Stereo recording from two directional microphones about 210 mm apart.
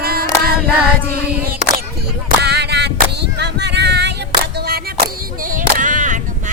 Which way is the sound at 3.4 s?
50° right (ahead or behind).